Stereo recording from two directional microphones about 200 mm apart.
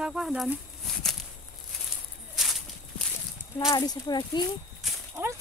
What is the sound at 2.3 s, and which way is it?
Walk, centre (ahead or behind).